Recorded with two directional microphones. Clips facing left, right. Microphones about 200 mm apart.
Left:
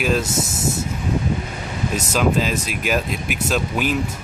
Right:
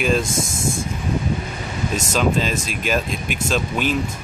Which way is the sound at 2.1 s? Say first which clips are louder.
Left 1 dB; 5° left (ahead or behind).